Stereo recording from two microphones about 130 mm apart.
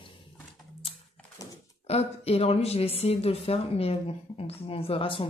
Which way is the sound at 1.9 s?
50° left (ahead or behind).